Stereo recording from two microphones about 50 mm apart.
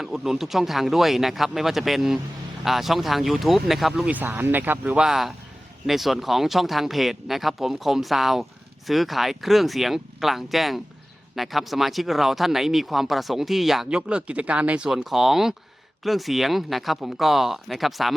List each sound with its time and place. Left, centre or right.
0.0 s speech: centre
4.4 s speech: right
4.9 s speech: centre
13.9 s speech: right
14.8 s speech: centre